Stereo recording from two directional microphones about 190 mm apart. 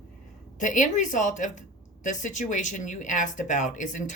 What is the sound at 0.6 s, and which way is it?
Speech, 40° left (ahead or behind).